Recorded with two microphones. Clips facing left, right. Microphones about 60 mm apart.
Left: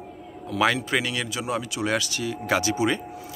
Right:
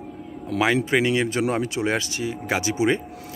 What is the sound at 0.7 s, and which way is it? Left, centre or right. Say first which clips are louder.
Speech: right 6 dB; right.